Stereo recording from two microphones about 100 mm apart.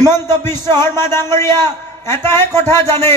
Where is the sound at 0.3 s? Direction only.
25° left (ahead or behind).